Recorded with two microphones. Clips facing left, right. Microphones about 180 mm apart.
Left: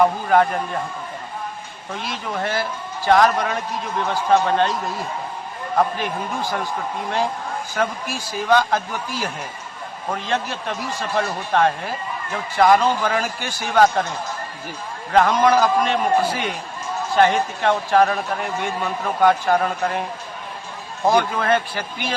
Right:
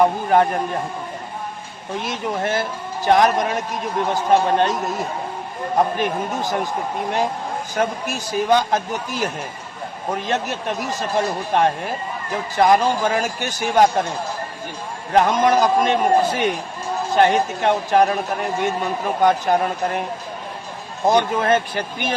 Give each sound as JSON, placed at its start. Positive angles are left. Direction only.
{"t": 0.0, "sound": "a man's voice", "side_deg": -20}
{"t": 1.9, "sound": "a man's voice", "side_deg": -20}
{"t": 6.3, "sound": "a man's voice", "side_deg": -20}
{"t": 7.8, "sound": "a man's voice", "side_deg": -20}
{"t": 15.1, "sound": "a man's voice", "side_deg": -20}
{"t": 21.1, "sound": "a man's voice", "side_deg": -20}